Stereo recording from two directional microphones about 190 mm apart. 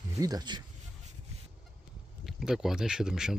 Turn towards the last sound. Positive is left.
turn(degrees=-5)  # may be behind; listen again after turning